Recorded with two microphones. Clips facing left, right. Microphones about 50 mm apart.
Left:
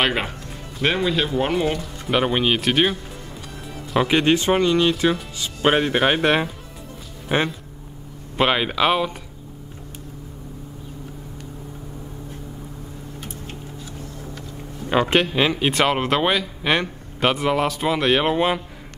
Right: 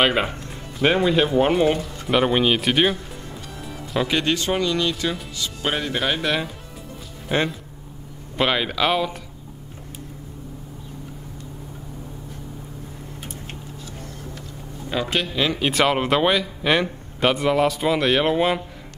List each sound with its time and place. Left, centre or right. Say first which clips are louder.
0.0 s a man's voice: right 2 dB; centre
1.0 s speech: right 3 dB; centre
1.8 s a man's voice: right 1 dB; centre
4.1 s speech: left 5 dB; left
7.3 s speech: left 1 dB; centre
14.9 s speech: left 6 dB; left
15.5 s a man's voice: even; centre